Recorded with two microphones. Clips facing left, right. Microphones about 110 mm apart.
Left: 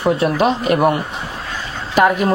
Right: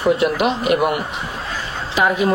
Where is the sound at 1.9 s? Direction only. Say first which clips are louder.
Left 3 dB; 50° left (ahead or behind).